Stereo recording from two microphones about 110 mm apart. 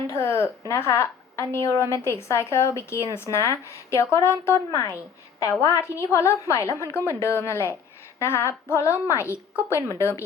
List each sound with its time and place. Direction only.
0.1 s a woman's voice: 25° left (ahead or behind)